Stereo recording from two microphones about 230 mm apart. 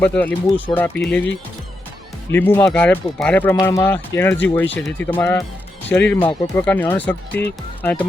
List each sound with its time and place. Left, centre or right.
0.0 s speech: centre
2.3 s speech: centre
6.1 s speech: left
6.7 s speech: centre